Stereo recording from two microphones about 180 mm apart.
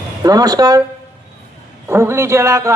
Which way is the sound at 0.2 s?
20° right (ahead or behind).